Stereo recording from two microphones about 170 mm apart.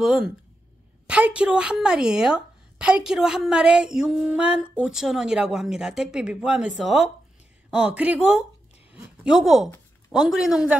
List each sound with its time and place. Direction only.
0.0 s a woman's voice: centre (ahead or behind)
7.7 s a woman's voice: 5° right (ahead or behind)